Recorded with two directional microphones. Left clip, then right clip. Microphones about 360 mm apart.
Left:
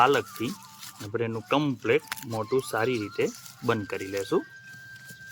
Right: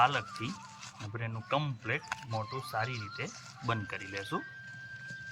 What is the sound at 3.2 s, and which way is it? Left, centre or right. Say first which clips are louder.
Speech: left 12 dB; centre.